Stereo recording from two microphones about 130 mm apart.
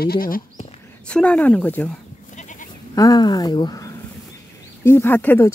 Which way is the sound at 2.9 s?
30° left (ahead or behind).